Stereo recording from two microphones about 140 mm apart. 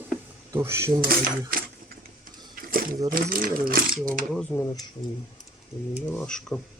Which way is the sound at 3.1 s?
90° right.